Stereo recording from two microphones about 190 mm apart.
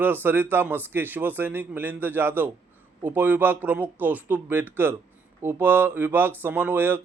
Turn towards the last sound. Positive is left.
turn(degrees=-10)  # may be behind; listen again after turning